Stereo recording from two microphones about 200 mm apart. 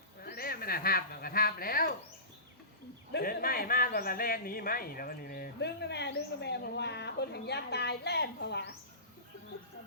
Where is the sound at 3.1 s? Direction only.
50° left (ahead or behind).